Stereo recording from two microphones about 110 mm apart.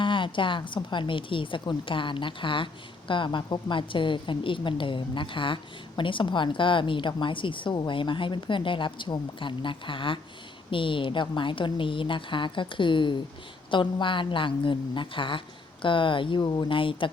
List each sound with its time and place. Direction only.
0.0 s a woman's voice: 50° left (ahead or behind)